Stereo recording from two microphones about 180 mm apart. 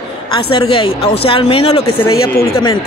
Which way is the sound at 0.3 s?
30° left (ahead or behind).